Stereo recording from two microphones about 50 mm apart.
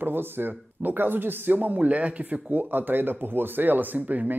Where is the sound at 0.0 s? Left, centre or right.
Right.